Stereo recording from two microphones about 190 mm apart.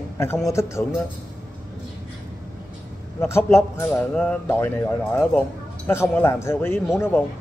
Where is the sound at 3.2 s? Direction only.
15° left (ahead or behind).